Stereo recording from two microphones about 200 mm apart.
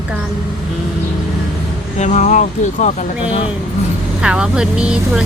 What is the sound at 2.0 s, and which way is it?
Speech, 35° left (ahead or behind).